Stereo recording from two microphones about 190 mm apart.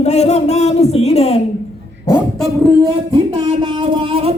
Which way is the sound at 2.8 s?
20° right (ahead or behind).